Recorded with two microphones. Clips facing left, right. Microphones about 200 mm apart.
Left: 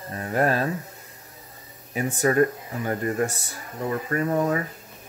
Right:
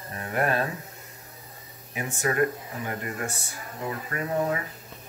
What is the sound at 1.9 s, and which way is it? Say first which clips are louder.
Speech: left 6 dB; 35° left (ahead or behind).